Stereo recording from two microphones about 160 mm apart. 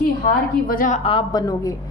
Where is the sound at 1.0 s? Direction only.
30° left (ahead or behind).